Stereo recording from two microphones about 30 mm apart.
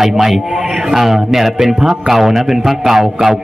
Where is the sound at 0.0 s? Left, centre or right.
Centre.